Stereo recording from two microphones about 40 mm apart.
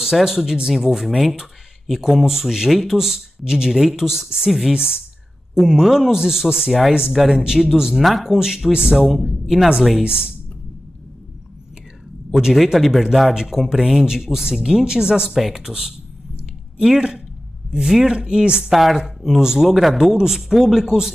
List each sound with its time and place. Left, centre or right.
0.0 s a man's voice: centre
4.7 s speech: right
5.7 s a man's voice: centre
9.0 s speech: centre
10.0 s speech: right
12.7 s a man's voice: centre
15.3 s speech: centre
15.6 s a man's voice: centre
18.1 s speech: right
18.7 s a man's voice: centre